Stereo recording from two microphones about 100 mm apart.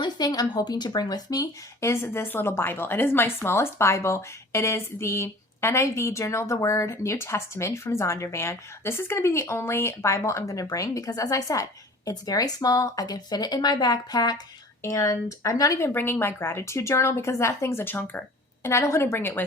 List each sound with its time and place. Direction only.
0.0 s a woman's voice: 40° left (ahead or behind)
14.8 s speech: 30° left (ahead or behind)
15.9 s speech: 20° left (ahead or behind)